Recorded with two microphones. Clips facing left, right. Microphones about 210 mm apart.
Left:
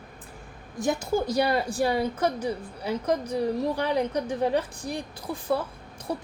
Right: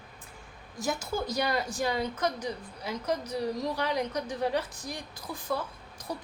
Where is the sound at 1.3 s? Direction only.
30° left (ahead or behind).